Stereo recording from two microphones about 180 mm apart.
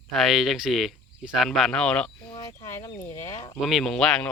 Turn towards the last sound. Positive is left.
turn(degrees=5)  # may be behind; listen again after turning